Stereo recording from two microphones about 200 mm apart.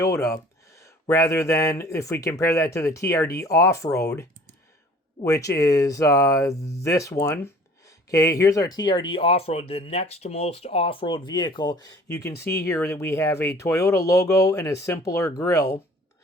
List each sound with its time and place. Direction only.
0.0 s speech: 15° left (ahead or behind)